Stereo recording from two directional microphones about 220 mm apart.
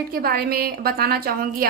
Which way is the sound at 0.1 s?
45° right (ahead or behind).